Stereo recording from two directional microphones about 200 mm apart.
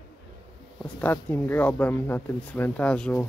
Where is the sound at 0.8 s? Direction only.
5° left (ahead or behind).